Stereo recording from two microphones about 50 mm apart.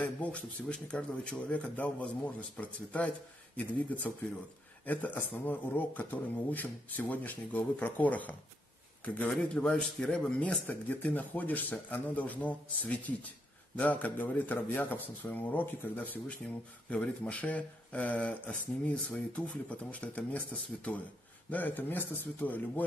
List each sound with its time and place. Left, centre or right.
0.0 s speech: left
10.7 s speech: left
16.3 s speech: left
21.5 s speech: left